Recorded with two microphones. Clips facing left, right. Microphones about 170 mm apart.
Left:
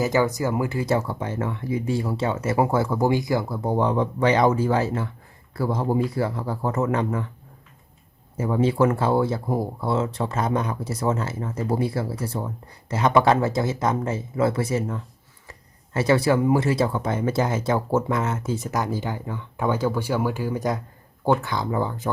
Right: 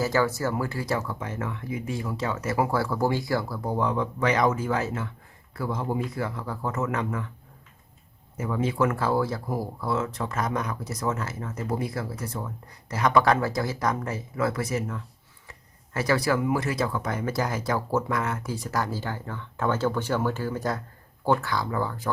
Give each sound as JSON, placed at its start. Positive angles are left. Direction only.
{"t": 0.0, "sound": "speech", "side_deg": 20}
{"t": 8.4, "sound": "speech", "side_deg": 30}